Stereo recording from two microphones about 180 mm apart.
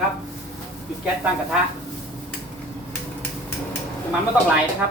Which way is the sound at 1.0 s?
5° right (ahead or behind).